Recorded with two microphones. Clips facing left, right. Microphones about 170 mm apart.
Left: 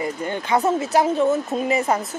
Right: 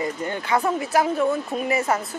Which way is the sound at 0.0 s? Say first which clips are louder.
Left 1 dB; 25° left (ahead or behind).